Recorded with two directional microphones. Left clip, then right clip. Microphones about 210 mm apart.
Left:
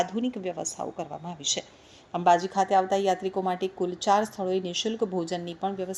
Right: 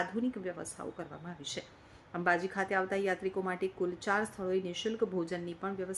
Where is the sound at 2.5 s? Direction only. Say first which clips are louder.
Left 10 dB; 15° left (ahead or behind).